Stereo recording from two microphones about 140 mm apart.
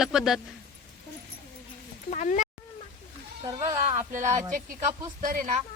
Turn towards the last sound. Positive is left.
turn(degrees=-65)  # may be behind; listen again after turning